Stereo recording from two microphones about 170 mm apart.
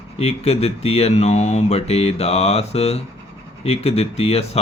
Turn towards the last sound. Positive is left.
turn(degrees=35)  # may be behind; listen again after turning